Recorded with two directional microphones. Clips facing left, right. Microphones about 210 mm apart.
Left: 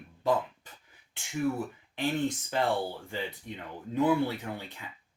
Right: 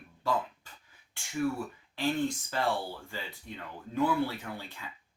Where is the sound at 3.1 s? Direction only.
20° left (ahead or behind).